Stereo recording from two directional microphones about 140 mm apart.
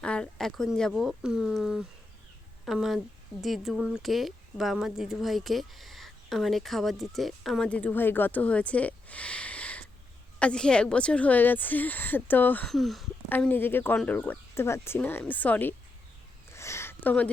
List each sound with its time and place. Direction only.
0.0 s speech: 5° left (ahead or behind)
12.6 s speech: centre (ahead or behind)
13.2 s speech: 15° left (ahead or behind)
16.5 s a sound: 20° left (ahead or behind)